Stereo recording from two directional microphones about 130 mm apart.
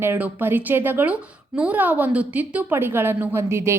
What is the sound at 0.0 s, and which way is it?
A woman's voice, 15° right (ahead or behind).